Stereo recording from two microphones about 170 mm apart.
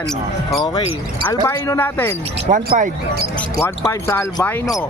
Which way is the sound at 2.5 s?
50° right (ahead or behind).